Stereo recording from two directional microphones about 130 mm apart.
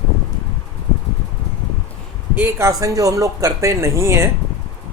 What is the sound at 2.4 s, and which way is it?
Speech, 20° right (ahead or behind).